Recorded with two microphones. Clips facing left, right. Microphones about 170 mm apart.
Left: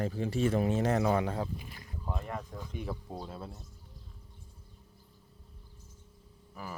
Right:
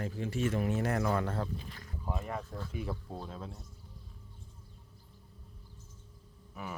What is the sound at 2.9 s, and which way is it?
Speech, 10° left (ahead or behind).